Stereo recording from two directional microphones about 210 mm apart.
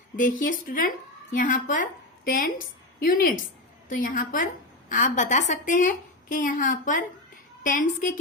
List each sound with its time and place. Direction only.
0.2 s a woman's voice: 40° left (ahead or behind)